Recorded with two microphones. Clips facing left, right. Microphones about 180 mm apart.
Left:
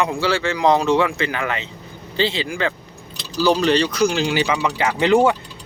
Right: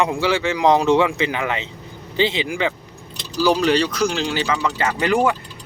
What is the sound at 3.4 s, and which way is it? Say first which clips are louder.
Speech: even; 10° right (ahead or behind).